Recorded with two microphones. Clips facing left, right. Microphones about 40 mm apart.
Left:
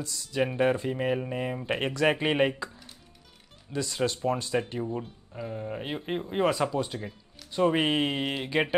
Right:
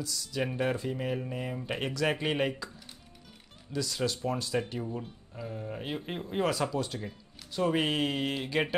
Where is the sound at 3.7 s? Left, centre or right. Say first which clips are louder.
Left 3 dB; left.